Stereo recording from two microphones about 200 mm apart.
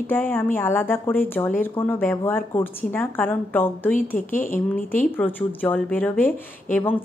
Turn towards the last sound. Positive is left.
turn(degrees=10)  # may be behind; listen again after turning